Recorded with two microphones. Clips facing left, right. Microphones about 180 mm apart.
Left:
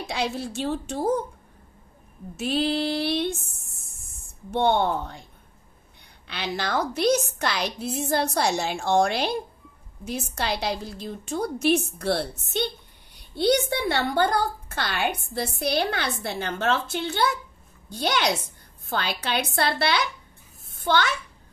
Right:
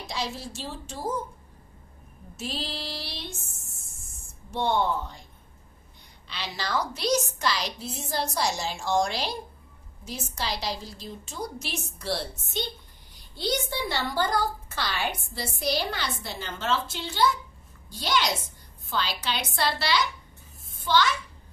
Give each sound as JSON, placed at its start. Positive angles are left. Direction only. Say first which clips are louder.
{"t": 0.1, "sound": "a woman's voice", "louder": "left 5 dB", "side_deg": 60}
{"t": 2.3, "sound": "a woman's voice", "louder": "left 11 dB", "side_deg": 60}
{"t": 4.5, "sound": "a woman's voice", "louder": "left 4 dB", "side_deg": 60}
{"t": 6.2, "sound": "a woman's voice", "louder": "left 5 dB", "side_deg": 55}
{"t": 20.7, "sound": "a sound", "louder": "left 1 dB", "side_deg": 55}